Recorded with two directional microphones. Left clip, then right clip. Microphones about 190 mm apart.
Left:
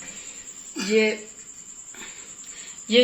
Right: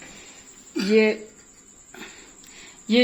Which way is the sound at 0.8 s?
50° right (ahead or behind).